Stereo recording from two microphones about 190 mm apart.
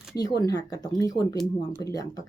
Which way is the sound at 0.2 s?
20° left (ahead or behind).